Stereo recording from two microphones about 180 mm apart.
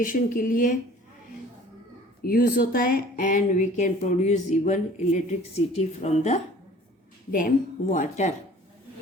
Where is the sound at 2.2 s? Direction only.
55° left (ahead or behind).